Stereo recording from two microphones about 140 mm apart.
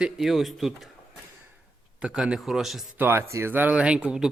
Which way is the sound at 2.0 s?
5° right (ahead or behind).